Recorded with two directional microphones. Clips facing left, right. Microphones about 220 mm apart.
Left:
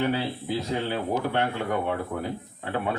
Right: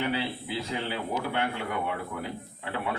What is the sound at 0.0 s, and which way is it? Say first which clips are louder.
A man's voice: left 4 dB; 45° left (ahead or behind).